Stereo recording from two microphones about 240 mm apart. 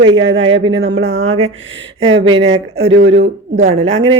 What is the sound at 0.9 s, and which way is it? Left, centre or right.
Speech, right.